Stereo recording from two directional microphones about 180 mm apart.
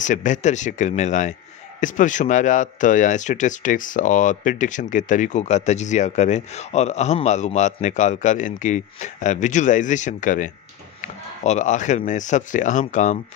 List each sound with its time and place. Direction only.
0.0 s speech: 45° left (ahead or behind)